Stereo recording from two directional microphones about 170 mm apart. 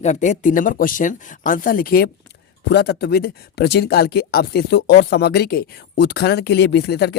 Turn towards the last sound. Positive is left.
turn(degrees=75)  # may be behind; listen again after turning